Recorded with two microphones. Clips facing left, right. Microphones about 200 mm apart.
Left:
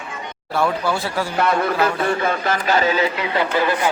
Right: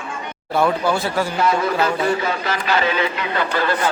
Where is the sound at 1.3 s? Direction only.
55° left (ahead or behind); by 3.0 s 40° left (ahead or behind).